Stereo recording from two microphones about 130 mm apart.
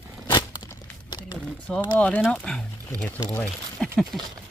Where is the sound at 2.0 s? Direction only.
10° left (ahead or behind).